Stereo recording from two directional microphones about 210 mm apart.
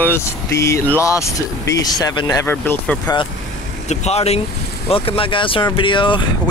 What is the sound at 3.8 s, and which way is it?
Speech, 30° left (ahead or behind).